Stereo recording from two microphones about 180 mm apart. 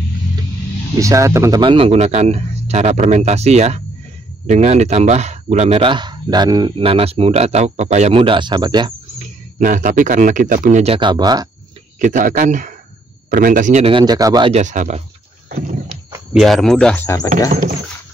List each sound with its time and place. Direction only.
0.9 s speech: 15° right (ahead or behind)
1.6 s speech: 30° right (ahead or behind)
9.2 s speech: 45° right (ahead or behind); by 11.4 s 25° right (ahead or behind)
12.0 s speech: 45° right (ahead or behind)
13.8 s speech: 25° right (ahead or behind)
14.5 s speech: 45° right (ahead or behind)
16.3 s speech: centre (ahead or behind)
17.5 s speech: 45° right (ahead or behind)